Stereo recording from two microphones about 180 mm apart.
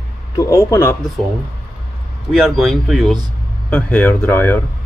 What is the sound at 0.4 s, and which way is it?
Speech, 20° left (ahead or behind).